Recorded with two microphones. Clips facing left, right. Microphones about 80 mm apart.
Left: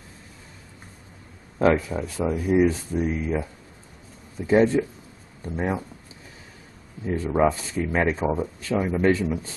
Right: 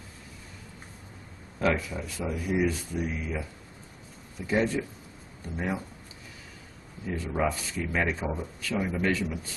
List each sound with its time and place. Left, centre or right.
1.6 s speech: left
4.5 s speech: left
7.1 s speech: left